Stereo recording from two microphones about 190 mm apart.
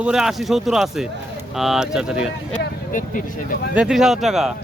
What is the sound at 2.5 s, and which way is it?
Speech, 45° left (ahead or behind).